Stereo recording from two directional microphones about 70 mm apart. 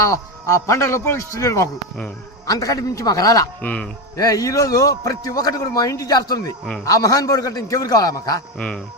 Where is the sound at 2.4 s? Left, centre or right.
Left.